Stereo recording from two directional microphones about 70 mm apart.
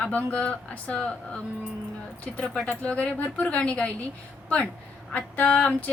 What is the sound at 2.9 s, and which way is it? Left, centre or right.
A woman's voice, centre.